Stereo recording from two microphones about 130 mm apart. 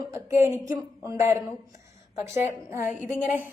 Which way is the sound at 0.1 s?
20° right (ahead or behind).